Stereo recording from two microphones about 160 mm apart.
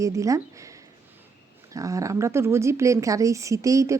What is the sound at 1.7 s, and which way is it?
A woman's voice, 20° right (ahead or behind).